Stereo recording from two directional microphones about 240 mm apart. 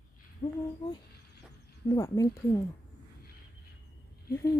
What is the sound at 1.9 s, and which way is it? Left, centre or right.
Speech, centre.